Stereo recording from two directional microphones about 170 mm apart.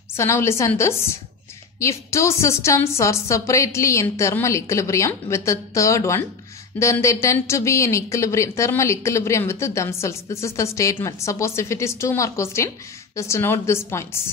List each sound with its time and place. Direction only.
0.1 s speech: 15° left (ahead or behind)